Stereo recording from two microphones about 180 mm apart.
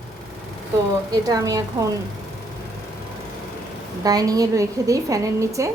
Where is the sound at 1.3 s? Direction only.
20° right (ahead or behind).